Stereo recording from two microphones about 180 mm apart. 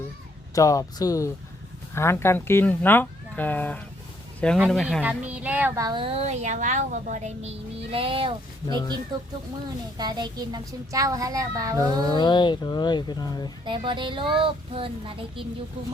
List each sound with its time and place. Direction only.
0.5 s speech: 20° left (ahead or behind)
4.5 s a child's voice: centre (ahead or behind); by 12.1 s 20° right (ahead or behind)
12.1 s speech: 25° left (ahead or behind)
13.7 s a child's voice: 25° right (ahead or behind)